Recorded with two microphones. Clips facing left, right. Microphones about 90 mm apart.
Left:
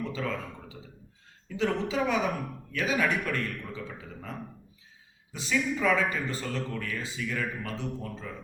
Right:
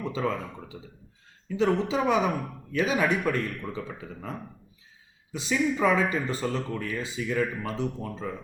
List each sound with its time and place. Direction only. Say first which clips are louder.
0.0 s a sound: right 4 dB; 25° right (ahead or behind)
1.5 s speech: right 4 dB; 20° right (ahead or behind)
5.3 s speech: right 3 dB; 20° right (ahead or behind)